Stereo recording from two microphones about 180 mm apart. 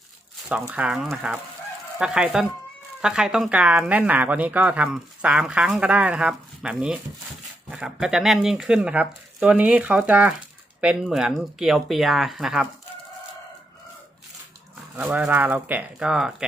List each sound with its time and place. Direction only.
0.7 s speech: 5° right (ahead or behind)
14.9 s speech: 5° right (ahead or behind)